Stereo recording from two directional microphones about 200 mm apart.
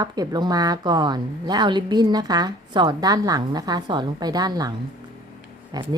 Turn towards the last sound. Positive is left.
turn(degrees=-20)  # may be behind; listen again after turning